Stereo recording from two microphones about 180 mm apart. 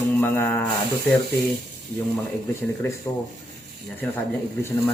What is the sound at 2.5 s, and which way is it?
Speech, 15° left (ahead or behind).